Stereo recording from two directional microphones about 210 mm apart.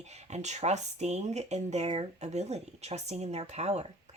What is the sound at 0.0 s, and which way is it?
Speech, 30° right (ahead or behind).